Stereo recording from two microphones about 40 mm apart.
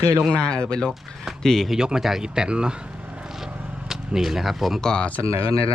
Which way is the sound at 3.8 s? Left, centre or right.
Centre.